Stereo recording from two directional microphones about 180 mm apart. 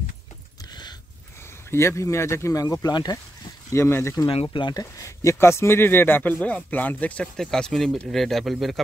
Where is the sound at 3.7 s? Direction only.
15° left (ahead or behind).